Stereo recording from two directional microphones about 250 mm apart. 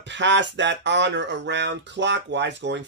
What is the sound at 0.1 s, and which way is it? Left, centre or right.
Speech, right.